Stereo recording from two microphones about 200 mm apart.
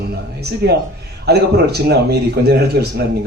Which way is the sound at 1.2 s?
55° right (ahead or behind).